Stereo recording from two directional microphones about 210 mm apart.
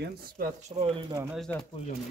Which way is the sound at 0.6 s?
30° right (ahead or behind).